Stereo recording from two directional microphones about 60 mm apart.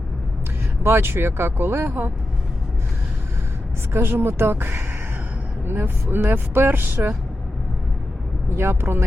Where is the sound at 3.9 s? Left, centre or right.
Right.